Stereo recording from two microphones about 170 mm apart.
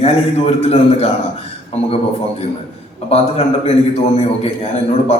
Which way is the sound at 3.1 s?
40° left (ahead or behind).